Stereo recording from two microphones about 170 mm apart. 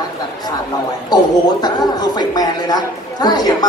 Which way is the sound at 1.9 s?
25° left (ahead or behind).